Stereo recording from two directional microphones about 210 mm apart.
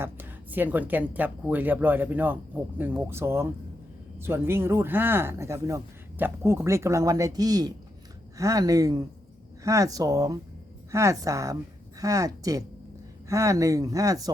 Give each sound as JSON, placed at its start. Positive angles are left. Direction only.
{"t": 0.0, "sound": "speech", "side_deg": -10}